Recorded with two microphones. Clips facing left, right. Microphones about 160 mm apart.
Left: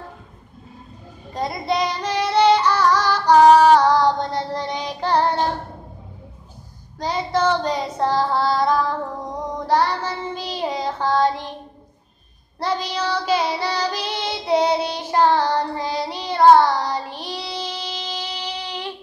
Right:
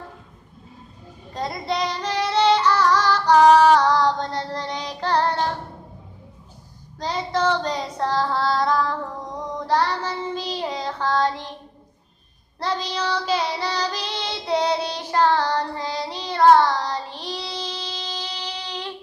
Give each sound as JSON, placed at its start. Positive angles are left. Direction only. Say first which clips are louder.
{"t": 1.4, "sound": "child singing", "louder": "left 3 dB", "side_deg": 5}
{"t": 3.5, "sound": "child singing", "louder": "left 2 dB", "side_deg": 15}
{"t": 3.8, "sound": "female singing", "louder": "left 3 dB", "side_deg": 10}
{"t": 4.5, "sound": "child singing", "louder": "left 3 dB", "side_deg": 20}
{"t": 7.0, "sound": "child singing", "louder": "left 2 dB", "side_deg": 5}
{"t": 12.5, "sound": "child singing", "louder": "left 2 dB", "side_deg": 10}